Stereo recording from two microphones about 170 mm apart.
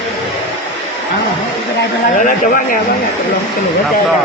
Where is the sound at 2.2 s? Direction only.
55° left (ahead or behind).